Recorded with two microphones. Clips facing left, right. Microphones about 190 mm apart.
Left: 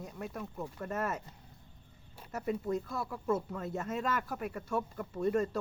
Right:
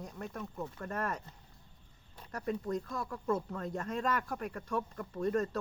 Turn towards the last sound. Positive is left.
turn(degrees=10)  # may be behind; listen again after turning